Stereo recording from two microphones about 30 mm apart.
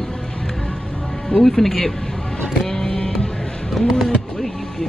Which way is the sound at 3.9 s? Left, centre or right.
Centre.